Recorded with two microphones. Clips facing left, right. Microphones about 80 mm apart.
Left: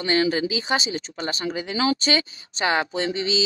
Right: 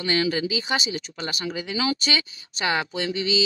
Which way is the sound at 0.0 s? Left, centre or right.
Left.